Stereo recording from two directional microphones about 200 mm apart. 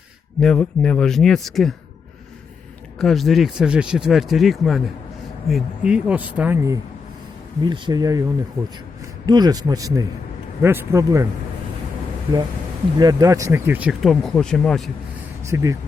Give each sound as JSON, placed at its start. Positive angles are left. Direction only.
{"t": 0.3, "sound": "speech", "side_deg": 5}
{"t": 3.0, "sound": "a man's voice", "side_deg": 0}
{"t": 9.2, "sound": "a man's voice", "side_deg": -20}
{"t": 13.0, "sound": "speech", "side_deg": -20}
{"t": 15.4, "sound": "speech", "side_deg": -15}